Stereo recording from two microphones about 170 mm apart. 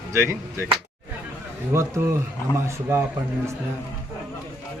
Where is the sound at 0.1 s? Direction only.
15° right (ahead or behind).